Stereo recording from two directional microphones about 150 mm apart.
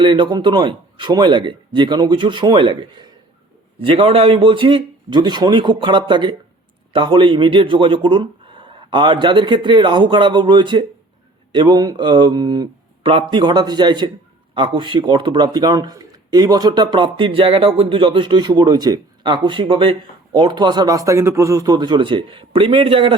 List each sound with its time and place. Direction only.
0.0 s speech: 35° right (ahead or behind)